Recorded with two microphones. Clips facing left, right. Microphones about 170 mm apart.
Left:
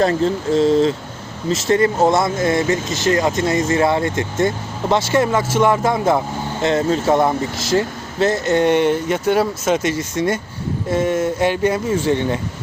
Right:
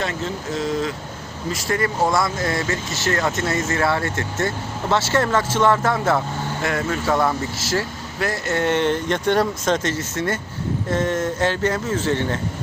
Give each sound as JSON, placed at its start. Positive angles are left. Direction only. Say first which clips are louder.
{"t": 0.0, "sound": "speech", "louder": "left 9 dB", "side_deg": 35}